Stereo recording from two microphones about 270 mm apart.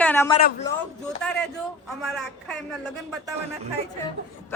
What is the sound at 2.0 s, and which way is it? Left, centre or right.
Speech, centre.